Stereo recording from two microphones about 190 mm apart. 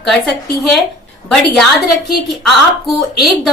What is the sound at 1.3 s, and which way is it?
Speech, centre (ahead or behind).